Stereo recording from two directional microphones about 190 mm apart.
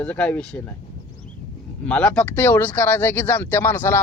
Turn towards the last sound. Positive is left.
turn(degrees=10)  # may be behind; listen again after turning